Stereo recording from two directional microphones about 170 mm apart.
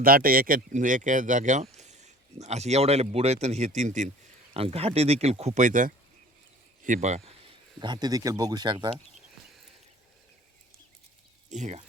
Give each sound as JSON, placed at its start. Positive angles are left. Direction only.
{"t": 0.0, "sound": "speech", "side_deg": -55}
{"t": 11.5, "sound": "speech", "side_deg": -45}